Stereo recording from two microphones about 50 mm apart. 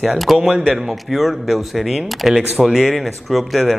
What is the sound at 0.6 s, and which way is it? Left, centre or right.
A man's voice, centre.